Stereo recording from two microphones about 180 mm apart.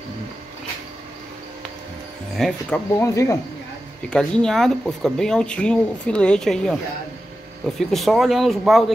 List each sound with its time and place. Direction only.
2.3 s speech: centre (ahead or behind)
3.0 s speech: 15° left (ahead or behind)
4.1 s speech: 5° left (ahead or behind)